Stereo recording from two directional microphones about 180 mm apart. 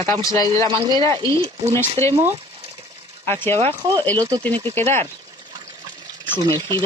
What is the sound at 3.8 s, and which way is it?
Speech, 25° right (ahead or behind).